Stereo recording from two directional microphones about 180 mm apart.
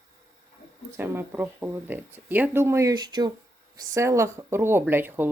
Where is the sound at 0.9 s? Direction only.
10° right (ahead or behind).